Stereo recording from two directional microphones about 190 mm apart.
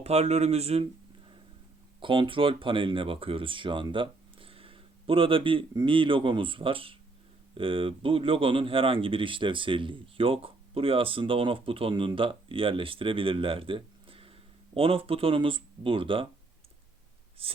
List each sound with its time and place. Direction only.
0.0 s speech: 35° right (ahead or behind)
2.0 s speech: 25° right (ahead or behind)